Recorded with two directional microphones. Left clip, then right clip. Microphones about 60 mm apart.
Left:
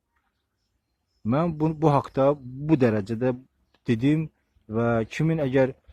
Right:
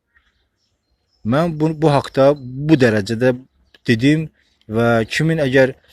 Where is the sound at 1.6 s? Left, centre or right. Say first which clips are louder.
Right 7 dB; left.